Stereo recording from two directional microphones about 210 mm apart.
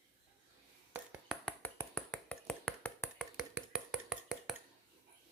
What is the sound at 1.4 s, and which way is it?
Finger snapping, 5° left (ahead or behind).